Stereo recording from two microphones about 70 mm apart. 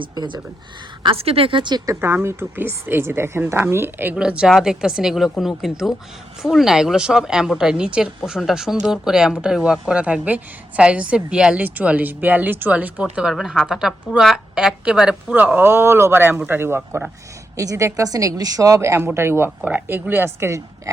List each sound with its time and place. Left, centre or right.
0.1 s speech: right
2.0 s speech: right
4.1 s a woman's voice: centre
11.6 s speech: right
13.3 s a woman's voice: centre
15.5 s speech: right
17.6 s a woman's voice: right
20.9 s a sound: right